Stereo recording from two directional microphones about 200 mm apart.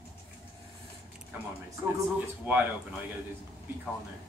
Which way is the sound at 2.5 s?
10° right (ahead or behind).